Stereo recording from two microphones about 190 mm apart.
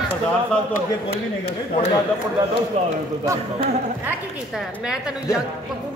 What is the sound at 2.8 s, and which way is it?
Speech, 35° right (ahead or behind).